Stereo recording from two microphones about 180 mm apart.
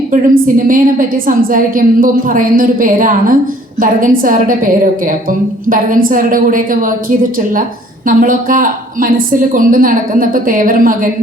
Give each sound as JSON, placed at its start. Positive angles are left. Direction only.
{"t": 0.1, "sound": "a woman's voice", "side_deg": -50}
{"t": 8.0, "sound": "a woman's voice", "side_deg": -50}